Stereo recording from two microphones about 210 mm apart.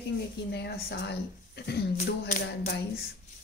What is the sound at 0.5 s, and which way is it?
A woman's voice, 50° left (ahead or behind).